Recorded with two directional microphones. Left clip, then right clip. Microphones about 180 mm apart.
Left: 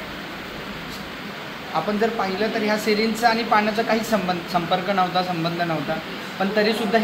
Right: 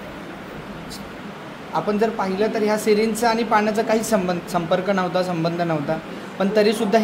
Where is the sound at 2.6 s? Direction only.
90° right.